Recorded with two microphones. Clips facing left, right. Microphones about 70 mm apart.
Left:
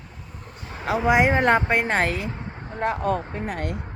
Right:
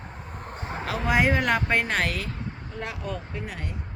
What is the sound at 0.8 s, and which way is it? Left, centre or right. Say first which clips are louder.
Speech: left 5 dB; left.